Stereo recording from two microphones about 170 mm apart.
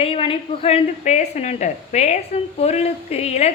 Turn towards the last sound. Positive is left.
turn(degrees=40)  # may be behind; listen again after turning